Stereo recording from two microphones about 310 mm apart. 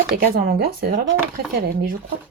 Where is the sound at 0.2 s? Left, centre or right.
Right.